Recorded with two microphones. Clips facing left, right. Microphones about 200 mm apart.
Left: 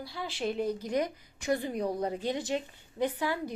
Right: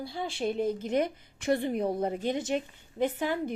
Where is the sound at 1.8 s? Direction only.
25° right (ahead or behind).